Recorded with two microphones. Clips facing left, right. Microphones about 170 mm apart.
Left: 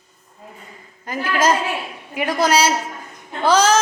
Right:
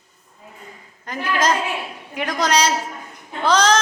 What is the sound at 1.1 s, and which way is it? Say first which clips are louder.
A woman's voice: left 2 dB; 5° left (ahead or behind).